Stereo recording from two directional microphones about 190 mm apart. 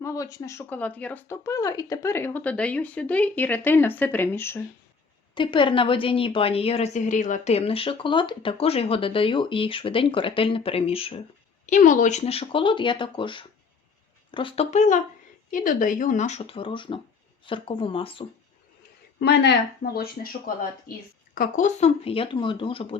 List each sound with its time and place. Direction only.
0.0 s speech: 15° left (ahead or behind)
5.3 s a woman's voice: 25° left (ahead or behind)
11.6 s a woman's voice: 40° left (ahead or behind)
19.2 s a woman's voice: 60° left (ahead or behind); by 23.0 s 30° left (ahead or behind)